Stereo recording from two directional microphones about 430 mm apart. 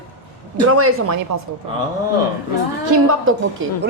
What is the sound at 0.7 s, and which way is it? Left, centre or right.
Speech, right.